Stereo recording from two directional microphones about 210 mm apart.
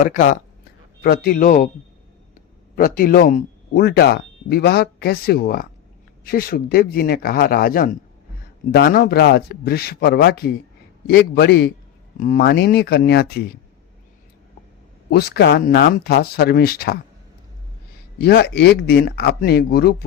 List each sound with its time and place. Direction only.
0.0 s speech: 40° left (ahead or behind)
2.7 s speech: 40° left (ahead or behind)
12.1 s speech: 40° left (ahead or behind)
15.1 s speech: 50° left (ahead or behind)
18.2 s speech: 50° left (ahead or behind)